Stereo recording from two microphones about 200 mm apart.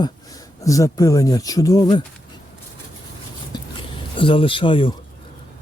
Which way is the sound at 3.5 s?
20° left (ahead or behind).